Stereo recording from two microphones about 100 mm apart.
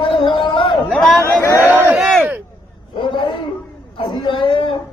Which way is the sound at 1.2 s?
30° left (ahead or behind).